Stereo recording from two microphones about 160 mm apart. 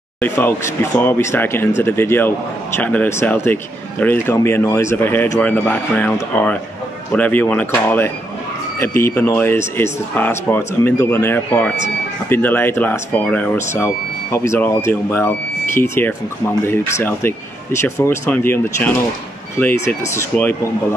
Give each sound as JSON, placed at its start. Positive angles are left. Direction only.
{"t": 0.2, "sound": "speech", "side_deg": 15}